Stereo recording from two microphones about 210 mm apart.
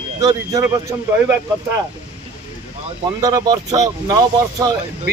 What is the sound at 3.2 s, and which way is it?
Speech, 15° right (ahead or behind).